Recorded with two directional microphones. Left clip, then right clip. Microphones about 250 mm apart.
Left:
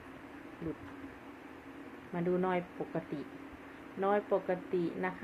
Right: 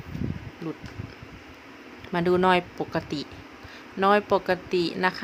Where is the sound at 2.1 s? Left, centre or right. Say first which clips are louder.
Right 12 dB; right.